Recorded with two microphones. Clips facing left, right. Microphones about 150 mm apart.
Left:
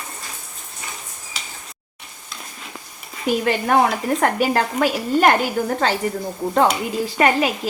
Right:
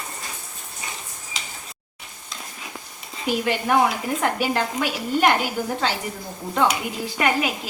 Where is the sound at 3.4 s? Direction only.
50° left (ahead or behind).